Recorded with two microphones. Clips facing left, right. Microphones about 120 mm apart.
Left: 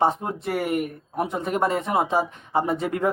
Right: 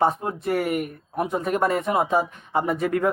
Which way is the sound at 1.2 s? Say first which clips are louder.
Right 1 dB; 25° left (ahead or behind).